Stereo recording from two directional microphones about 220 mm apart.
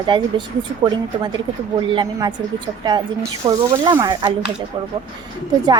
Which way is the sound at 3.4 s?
20° right (ahead or behind).